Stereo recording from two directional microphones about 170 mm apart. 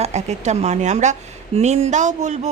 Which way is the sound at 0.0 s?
40° right (ahead or behind).